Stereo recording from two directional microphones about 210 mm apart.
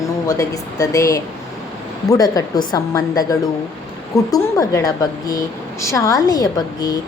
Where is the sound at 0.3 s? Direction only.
15° left (ahead or behind).